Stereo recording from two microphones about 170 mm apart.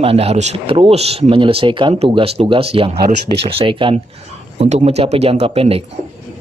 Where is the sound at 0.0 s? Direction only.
35° right (ahead or behind).